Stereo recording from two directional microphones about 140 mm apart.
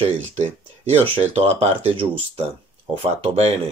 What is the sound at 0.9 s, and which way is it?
Speech, 45° right (ahead or behind).